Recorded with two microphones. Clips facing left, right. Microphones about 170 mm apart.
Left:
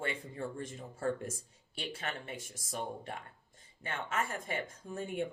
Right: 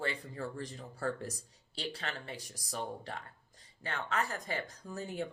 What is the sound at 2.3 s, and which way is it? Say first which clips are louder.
Speech: even; 25° left (ahead or behind).